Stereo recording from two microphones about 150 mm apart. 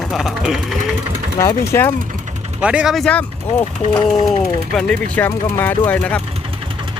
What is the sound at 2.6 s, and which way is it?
Speech, 5° right (ahead or behind).